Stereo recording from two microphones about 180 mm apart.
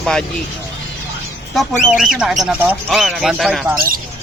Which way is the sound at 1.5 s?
Centre (ahead or behind).